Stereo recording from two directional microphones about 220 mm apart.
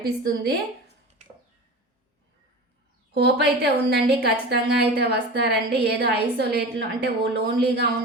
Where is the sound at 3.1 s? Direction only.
50° right (ahead or behind).